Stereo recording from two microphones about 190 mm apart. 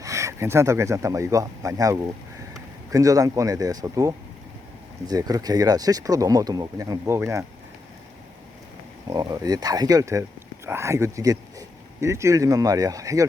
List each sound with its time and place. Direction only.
0.0 s speech: 15° right (ahead or behind)
9.0 s speech: 20° right (ahead or behind)